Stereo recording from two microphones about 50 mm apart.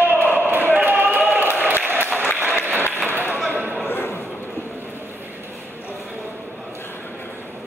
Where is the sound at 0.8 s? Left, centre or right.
Right.